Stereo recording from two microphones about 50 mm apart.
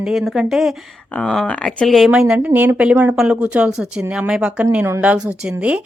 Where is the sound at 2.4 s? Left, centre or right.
Right.